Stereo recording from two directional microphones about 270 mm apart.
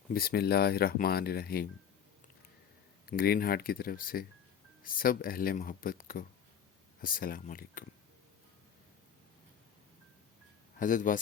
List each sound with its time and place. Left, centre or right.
0.1 s speech: left
3.1 s speech: left
10.8 s speech: left